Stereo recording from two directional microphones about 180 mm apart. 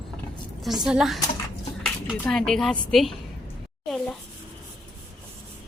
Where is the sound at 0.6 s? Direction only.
Centre (ahead or behind).